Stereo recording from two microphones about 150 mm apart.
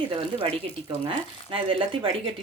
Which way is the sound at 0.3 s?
35° right (ahead or behind).